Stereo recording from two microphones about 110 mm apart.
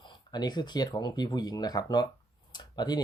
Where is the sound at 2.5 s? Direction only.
40° left (ahead or behind).